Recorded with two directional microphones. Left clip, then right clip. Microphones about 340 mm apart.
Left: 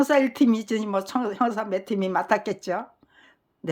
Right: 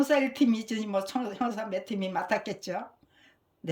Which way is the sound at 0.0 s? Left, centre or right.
Centre.